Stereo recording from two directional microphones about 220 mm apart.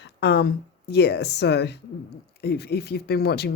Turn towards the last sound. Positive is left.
turn(degrees=45)  # may be behind; listen again after turning